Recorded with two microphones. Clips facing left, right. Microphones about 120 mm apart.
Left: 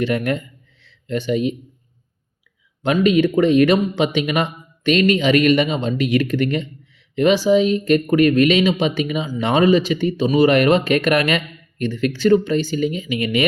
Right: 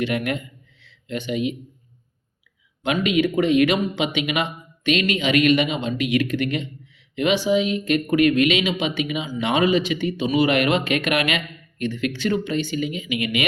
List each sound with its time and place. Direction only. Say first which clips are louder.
0.0 s speech: left 4 dB; 35° left (ahead or behind)
2.8 s speech: left 5 dB; 35° left (ahead or behind)